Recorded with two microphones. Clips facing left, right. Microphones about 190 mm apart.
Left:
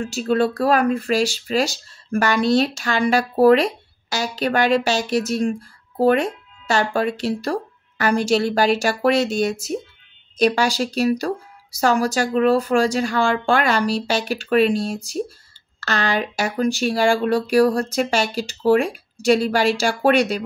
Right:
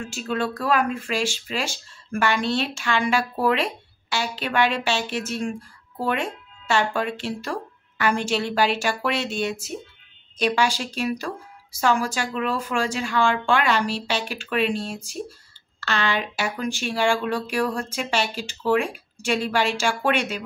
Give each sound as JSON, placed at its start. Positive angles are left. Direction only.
{"t": 0.0, "sound": "speech", "side_deg": 40}